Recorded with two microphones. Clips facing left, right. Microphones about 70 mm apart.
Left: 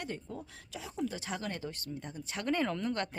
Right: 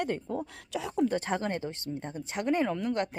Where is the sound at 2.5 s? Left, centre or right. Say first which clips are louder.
Right 4 dB; centre.